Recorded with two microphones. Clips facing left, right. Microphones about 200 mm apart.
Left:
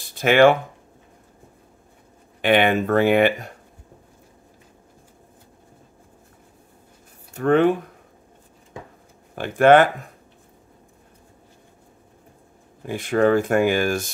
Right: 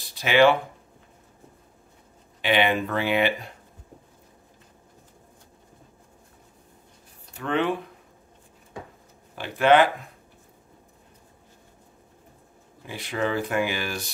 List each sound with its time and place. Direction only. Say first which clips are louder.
0.1 s speech: left 4 dB; 50° left (ahead or behind)
2.4 s speech: left 5 dB; 50° left (ahead or behind)
7.3 s speech: left 8 dB; 45° left (ahead or behind)
9.6 s speech: left 5 dB; 50° left (ahead or behind)
12.8 s speech: left 9 dB; 50° left (ahead or behind)